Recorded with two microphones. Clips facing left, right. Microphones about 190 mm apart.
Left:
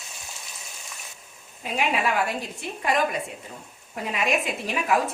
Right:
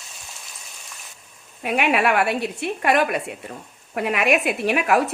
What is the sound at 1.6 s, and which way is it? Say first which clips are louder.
A woman's voice: right 5 dB; 70° right (ahead or behind).